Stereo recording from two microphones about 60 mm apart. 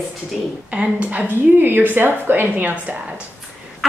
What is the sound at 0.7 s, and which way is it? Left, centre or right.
A woman's voice, right.